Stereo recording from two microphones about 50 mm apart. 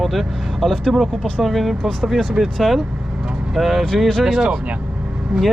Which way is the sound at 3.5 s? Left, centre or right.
Centre.